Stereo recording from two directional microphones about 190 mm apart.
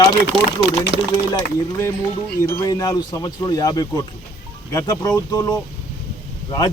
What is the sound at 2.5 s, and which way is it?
Speech, 15° left (ahead or behind).